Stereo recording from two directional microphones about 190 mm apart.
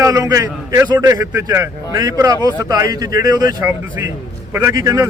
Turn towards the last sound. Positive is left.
turn(degrees=-15)  # may be behind; listen again after turning